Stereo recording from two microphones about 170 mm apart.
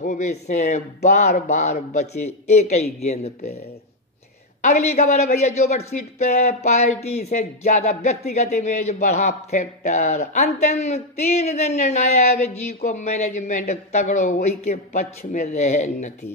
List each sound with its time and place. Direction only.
0.0 s a man's voice: 45° left (ahead or behind)
4.6 s a man's voice: 40° left (ahead or behind)